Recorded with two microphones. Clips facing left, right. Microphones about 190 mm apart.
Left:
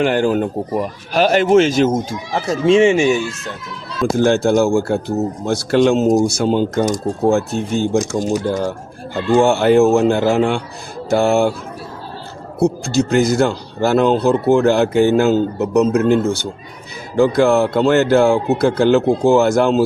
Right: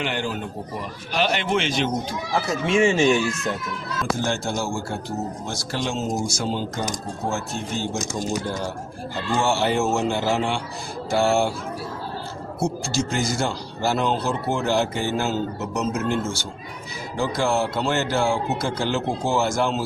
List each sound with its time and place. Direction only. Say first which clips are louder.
0.0 s speech: left 12 dB; 45° left (ahead or behind)
2.5 s speech: left 9 dB; 25° left (ahead or behind)
2.9 s speech: left 4 dB; 10° left (ahead or behind)
4.1 s speech: left 12 dB; 60° left (ahead or behind)
9.4 s speech: left 10 dB; 55° left (ahead or behind)
12.5 s speech: left 9 dB; 60° left (ahead or behind)